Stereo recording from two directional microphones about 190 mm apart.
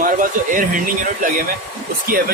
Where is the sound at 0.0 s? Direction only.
45° right (ahead or behind).